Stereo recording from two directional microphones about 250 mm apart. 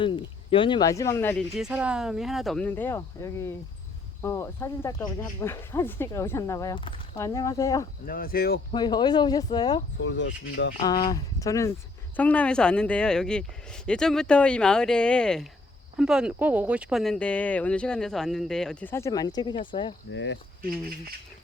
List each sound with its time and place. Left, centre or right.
0.0 s speech: centre
8.0 s speech: left
8.7 s speech: centre
10.0 s speech: left
10.8 s speech: centre
20.1 s speech: left